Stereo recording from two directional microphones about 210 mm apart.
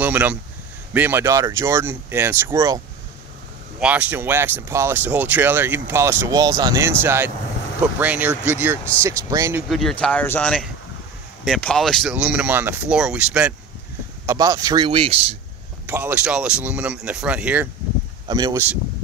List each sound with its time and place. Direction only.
0.0 s speech: 10° right (ahead or behind)
3.8 s speech: 5° right (ahead or behind); by 15.1 s 25° right (ahead or behind)
15.9 s speech: 10° right (ahead or behind)
18.2 s speech: 20° right (ahead or behind)